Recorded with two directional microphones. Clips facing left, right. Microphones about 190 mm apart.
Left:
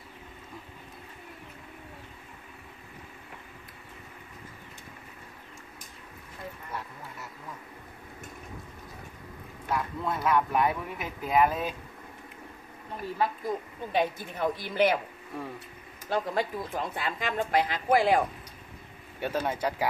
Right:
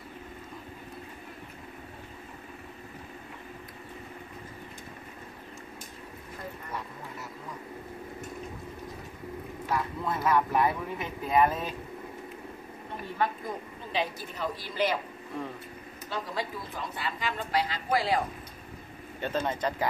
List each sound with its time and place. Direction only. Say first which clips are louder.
9.7 s a man's voice: even; centre (ahead or behind)
13.9 s a woman's voice: left 4 dB; 55° left (ahead or behind)
16.1 s a woman's voice: left 6 dB; 50° left (ahead or behind)
19.2 s speech: left 1 dB; 10° left (ahead or behind)